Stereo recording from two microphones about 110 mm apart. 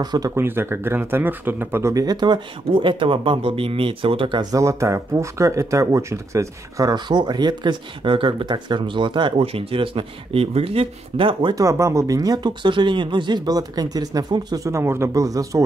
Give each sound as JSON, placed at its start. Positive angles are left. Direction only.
{"t": 0.0, "sound": "speech", "side_deg": -40}
{"t": 0.4, "sound": "speech", "side_deg": -20}
{"t": 4.4, "sound": "speech", "side_deg": -35}
{"t": 11.5, "sound": "speech", "side_deg": -30}
{"t": 14.7, "sound": "speech", "side_deg": -25}